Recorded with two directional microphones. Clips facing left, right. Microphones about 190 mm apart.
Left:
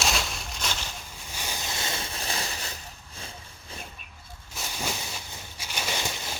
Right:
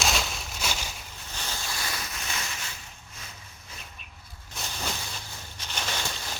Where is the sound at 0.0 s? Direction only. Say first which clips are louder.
Even; centre (ahead or behind).